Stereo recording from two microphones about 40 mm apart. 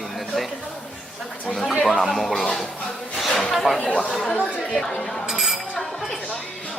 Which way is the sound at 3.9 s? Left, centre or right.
Left.